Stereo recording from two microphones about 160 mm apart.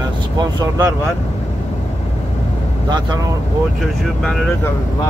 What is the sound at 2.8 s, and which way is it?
Speech, 25° right (ahead or behind).